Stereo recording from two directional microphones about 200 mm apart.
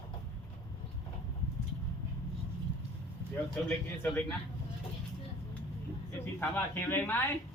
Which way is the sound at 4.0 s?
10° left (ahead or behind).